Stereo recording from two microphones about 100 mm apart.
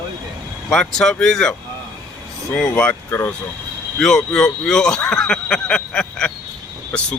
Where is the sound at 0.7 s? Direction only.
5° left (ahead or behind).